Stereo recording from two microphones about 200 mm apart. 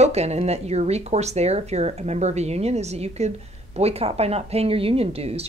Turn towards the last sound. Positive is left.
turn(degrees=-30)  # may be behind; listen again after turning